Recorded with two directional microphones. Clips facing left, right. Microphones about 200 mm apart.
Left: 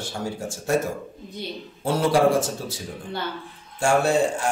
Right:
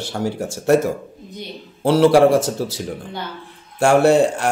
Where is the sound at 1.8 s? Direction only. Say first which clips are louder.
Right 7 dB; 80° right.